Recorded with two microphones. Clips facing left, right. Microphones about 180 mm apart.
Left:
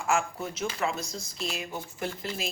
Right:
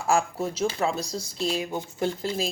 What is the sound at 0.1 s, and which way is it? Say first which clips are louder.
Speech: right 4 dB; 30° right (ahead or behind).